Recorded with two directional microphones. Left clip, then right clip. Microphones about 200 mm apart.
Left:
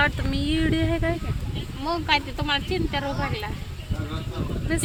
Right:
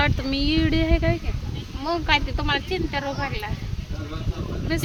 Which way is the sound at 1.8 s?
40° right (ahead or behind).